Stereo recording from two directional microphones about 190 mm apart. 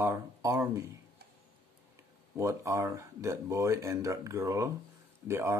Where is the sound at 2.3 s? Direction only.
15° right (ahead or behind).